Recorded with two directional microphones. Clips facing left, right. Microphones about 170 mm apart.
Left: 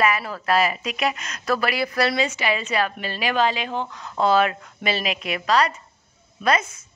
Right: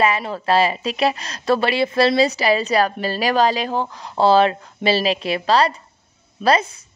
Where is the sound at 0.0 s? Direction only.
25° right (ahead or behind).